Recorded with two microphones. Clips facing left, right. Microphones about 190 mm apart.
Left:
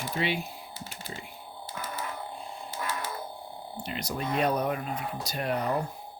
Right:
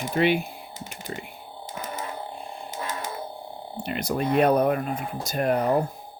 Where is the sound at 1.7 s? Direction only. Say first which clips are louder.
Right 3 dB; 25° right (ahead or behind).